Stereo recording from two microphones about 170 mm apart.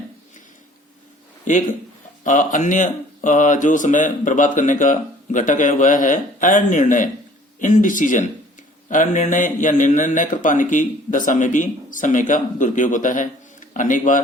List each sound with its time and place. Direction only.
2.2 s speech: 50° left (ahead or behind)